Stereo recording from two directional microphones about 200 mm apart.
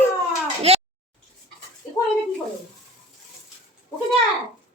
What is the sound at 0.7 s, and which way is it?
Speech, 30° right (ahead or behind).